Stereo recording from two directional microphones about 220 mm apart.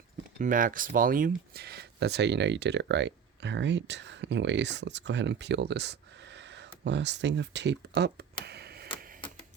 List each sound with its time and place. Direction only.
0.3 s speech: 35° right (ahead or behind)
8.4 s a sound: 45° right (ahead or behind)
9.0 s printer: 40° right (ahead or behind)